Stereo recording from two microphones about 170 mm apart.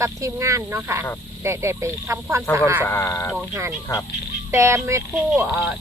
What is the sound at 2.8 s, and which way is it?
Speech, 15° left (ahead or behind).